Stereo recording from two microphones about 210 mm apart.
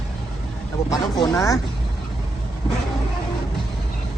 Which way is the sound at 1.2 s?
15° left (ahead or behind).